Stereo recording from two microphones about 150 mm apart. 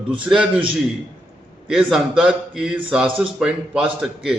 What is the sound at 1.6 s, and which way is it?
A man's voice, 5° right (ahead or behind).